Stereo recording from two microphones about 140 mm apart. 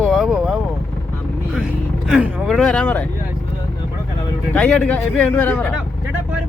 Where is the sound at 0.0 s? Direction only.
Centre (ahead or behind).